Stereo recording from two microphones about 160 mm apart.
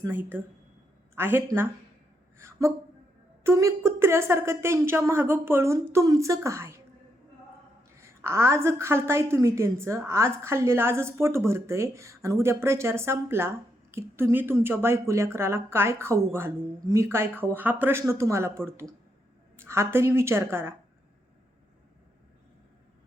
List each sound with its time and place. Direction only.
0.0 s a woman's voice: 15° right (ahead or behind)
7.9 s a woman's voice: 15° right (ahead or behind)